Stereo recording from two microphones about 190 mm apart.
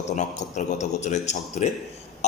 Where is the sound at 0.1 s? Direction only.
40° left (ahead or behind).